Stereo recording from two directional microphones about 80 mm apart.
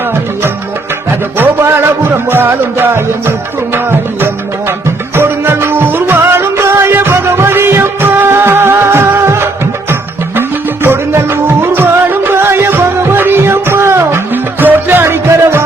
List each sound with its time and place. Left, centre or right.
1.4 s music: right
5.1 s music: right
10.8 s music: right